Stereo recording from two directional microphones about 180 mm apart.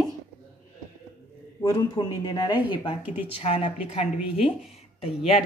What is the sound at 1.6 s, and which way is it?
Speech, 20° left (ahead or behind).